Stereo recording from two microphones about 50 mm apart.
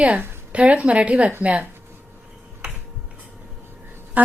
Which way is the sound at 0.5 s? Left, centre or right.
Right.